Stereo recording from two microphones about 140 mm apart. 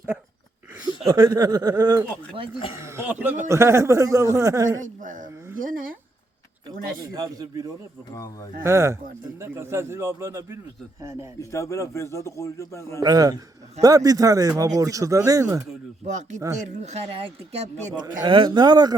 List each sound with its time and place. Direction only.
1.0 s a man's voice: 25° right (ahead or behind)
2.8 s a man's voice: 15° right (ahead or behind)
4.9 s speech: 65° right (ahead or behind)
5.5 s speech: 85° right
7.1 s a man's voice: 25° right (ahead or behind)
8.1 s a man's voice: 25° left (ahead or behind)
8.6 s a man's voice: 20° right (ahead or behind)
11.3 s a man's voice: 20° left (ahead or behind)
13.0 s a man's voice: 25° right (ahead or behind)
16.0 s speech: 60° right (ahead or behind)
18.0 s a man's voice: 30° right (ahead or behind)